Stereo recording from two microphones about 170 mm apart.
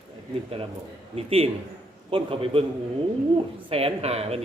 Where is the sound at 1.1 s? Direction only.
35° right (ahead or behind).